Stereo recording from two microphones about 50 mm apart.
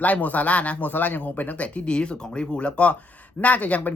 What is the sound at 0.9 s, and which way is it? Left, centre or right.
Speech, left.